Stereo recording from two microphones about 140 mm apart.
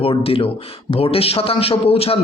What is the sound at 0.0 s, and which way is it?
A man's voice, 40° left (ahead or behind).